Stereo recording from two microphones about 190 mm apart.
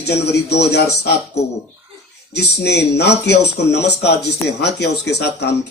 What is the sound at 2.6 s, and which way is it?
Speech, 60° left (ahead or behind).